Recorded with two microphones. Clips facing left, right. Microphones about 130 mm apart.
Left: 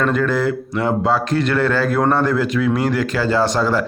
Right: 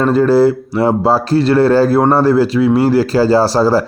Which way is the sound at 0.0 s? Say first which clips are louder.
Right 8 dB; 30° right (ahead or behind).